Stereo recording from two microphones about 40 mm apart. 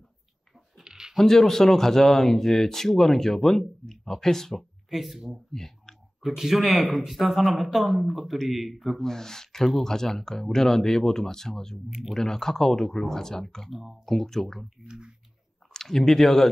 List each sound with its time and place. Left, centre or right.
0.7 s a sound: centre
1.1 s speech: centre
4.6 s speech: centre
5.5 s clicking: centre
6.2 s a man's voice: centre
9.0 s speech: centre
13.7 s a man's voice: centre
14.0 s speech: centre
14.9 s speech: right
15.7 s speech: centre